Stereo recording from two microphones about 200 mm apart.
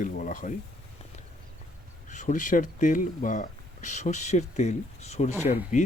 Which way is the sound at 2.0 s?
40° left (ahead or behind).